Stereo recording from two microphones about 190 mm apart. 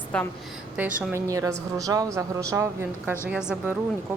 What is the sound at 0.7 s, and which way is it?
A woman's voice, 5° right (ahead or behind).